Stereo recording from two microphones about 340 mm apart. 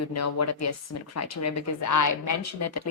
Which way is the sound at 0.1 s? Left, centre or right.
Left.